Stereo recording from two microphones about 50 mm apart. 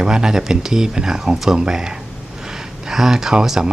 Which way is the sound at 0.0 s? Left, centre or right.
Centre.